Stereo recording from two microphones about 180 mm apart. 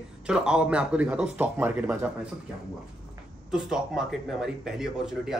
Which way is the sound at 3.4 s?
5° right (ahead or behind).